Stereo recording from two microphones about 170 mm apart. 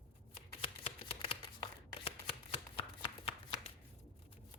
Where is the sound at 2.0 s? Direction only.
35° left (ahead or behind).